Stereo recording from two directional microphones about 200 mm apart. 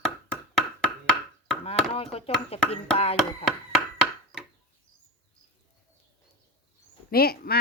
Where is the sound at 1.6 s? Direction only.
30° left (ahead or behind).